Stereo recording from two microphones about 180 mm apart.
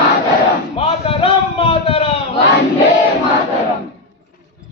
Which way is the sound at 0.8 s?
35° left (ahead or behind).